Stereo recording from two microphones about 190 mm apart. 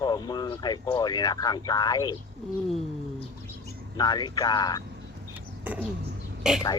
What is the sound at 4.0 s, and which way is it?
Speech, 20° left (ahead or behind).